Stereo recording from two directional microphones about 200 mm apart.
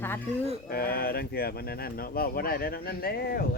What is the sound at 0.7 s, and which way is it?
Speech, 50° left (ahead or behind).